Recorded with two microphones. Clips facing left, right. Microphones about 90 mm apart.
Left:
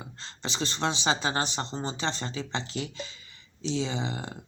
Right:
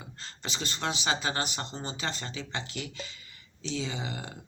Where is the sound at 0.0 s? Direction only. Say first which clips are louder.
Left 3 dB; 25° left (ahead or behind).